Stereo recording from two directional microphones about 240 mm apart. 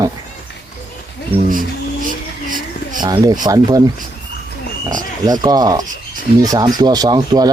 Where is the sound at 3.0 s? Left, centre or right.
Centre.